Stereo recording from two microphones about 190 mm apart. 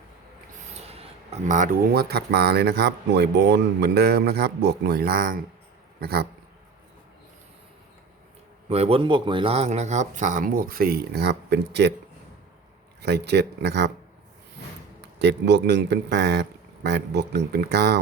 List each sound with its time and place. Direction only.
0.7 s speech: 35° right (ahead or behind); by 5.4 s 50° right (ahead or behind)
6.0 s dog: 55° right (ahead or behind)
8.7 s speech: 30° right (ahead or behind); by 11.9 s 65° right (ahead or behind)
13.0 s speech: 60° right (ahead or behind)
15.2 s speech: 65° right (ahead or behind)